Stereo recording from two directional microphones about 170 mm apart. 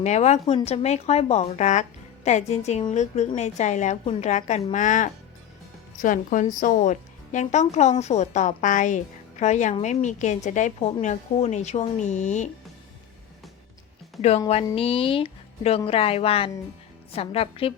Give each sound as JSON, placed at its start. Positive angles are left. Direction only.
{"t": 0.0, "sound": "a woman's voice", "side_deg": 40}
{"t": 14.2, "sound": "speech", "side_deg": 40}